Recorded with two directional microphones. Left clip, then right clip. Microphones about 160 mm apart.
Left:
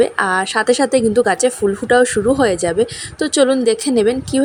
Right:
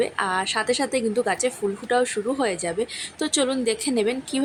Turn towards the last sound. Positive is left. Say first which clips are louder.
# left 9 dB
turn(degrees=35)  # may be behind; listen again after turning